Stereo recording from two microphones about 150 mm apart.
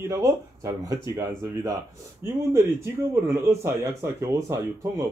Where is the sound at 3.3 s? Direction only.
20° right (ahead or behind).